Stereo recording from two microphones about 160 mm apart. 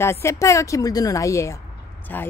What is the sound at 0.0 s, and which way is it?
A woman's voice, 15° left (ahead or behind).